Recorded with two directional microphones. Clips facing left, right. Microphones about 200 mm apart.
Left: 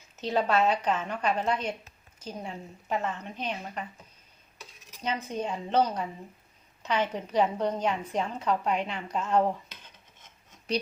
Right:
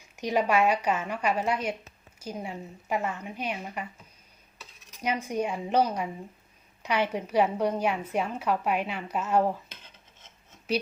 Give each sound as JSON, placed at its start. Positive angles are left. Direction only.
{"t": 0.2, "sound": "a woman's voice", "side_deg": -10}
{"t": 4.9, "sound": "a woman's voice", "side_deg": -10}